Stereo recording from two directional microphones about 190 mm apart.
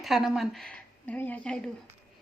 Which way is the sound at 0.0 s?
Centre (ahead or behind).